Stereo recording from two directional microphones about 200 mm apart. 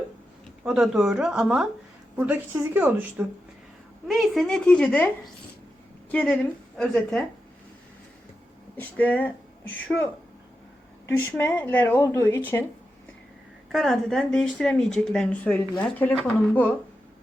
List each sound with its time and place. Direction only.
0.6 s a woman's voice: 5° right (ahead or behind)
8.7 s speech: 10° left (ahead or behind)
13.7 s speech: centre (ahead or behind)